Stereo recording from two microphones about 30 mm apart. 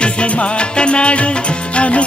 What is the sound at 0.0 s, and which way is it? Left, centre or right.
Music, left.